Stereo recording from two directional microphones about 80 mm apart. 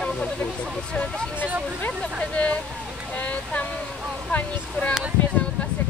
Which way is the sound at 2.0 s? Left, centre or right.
Centre.